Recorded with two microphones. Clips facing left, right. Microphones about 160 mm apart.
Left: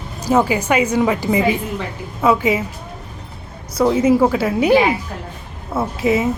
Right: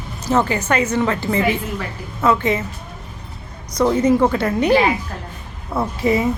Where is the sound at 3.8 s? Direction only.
5° left (ahead or behind).